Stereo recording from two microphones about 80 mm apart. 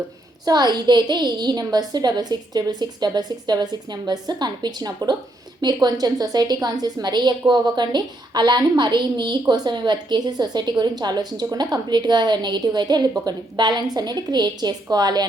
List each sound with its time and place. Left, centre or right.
0.4 s a woman's voice: right